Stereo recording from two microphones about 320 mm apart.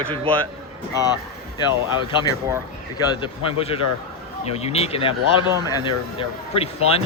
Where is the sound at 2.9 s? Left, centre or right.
Centre.